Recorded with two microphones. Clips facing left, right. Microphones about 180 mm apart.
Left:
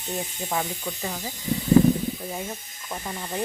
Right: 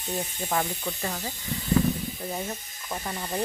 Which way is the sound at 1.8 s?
25° left (ahead or behind).